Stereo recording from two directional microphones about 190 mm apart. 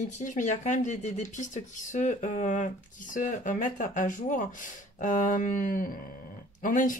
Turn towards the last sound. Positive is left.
turn(degrees=45)  # may be behind; listen again after turning